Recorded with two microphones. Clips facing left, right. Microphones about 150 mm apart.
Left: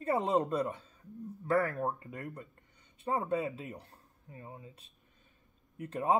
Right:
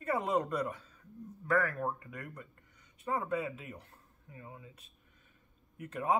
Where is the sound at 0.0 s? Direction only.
30° left (ahead or behind).